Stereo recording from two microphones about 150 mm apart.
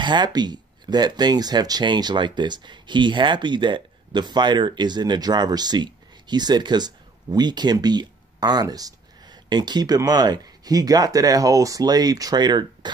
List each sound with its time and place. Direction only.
0.0 s speech: 30° right (ahead or behind)